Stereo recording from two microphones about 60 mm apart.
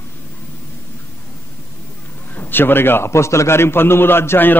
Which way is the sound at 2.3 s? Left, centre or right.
Left.